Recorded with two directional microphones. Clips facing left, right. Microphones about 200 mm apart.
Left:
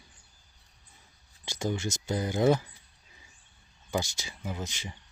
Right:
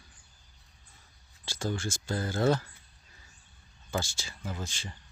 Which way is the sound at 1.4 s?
20° left (ahead or behind).